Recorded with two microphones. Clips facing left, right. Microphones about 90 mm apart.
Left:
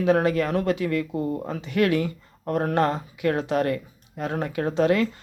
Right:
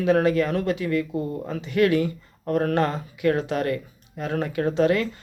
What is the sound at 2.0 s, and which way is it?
Speech, 35° left (ahead or behind).